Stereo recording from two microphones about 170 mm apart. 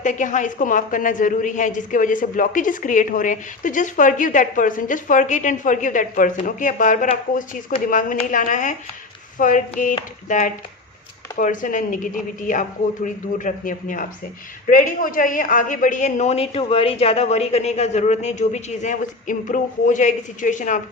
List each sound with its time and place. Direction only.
0.0 s a woman's voice: 45° left (ahead or behind)